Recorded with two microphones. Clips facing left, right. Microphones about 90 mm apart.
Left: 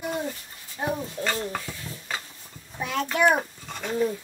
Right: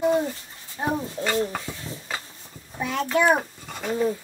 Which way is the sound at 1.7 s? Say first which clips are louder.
Right 3 dB; 15° right (ahead or behind).